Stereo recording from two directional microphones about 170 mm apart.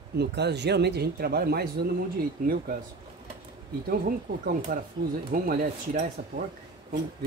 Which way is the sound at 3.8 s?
60° right (ahead or behind).